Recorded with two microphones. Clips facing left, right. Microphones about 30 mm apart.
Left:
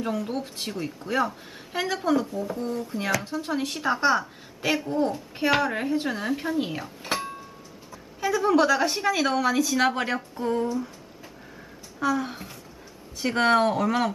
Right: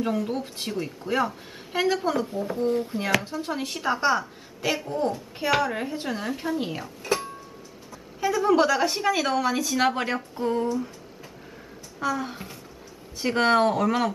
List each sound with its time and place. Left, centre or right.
0.0 s speech: centre
2.4 s speech: right
2.7 s speech: right
3.2 s speech: centre
8.2 s speech: centre
12.0 s speech: centre